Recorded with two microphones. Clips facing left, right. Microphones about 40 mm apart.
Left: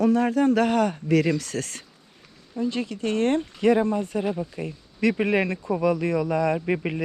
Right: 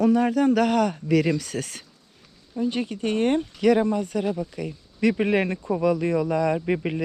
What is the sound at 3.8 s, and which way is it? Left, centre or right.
Speech, left.